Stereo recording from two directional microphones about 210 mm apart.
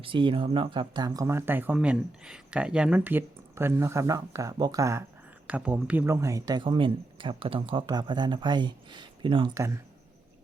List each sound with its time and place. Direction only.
0.0 s speech: 25° right (ahead or behind)